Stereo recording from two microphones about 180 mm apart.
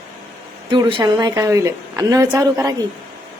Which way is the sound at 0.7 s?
25° right (ahead or behind).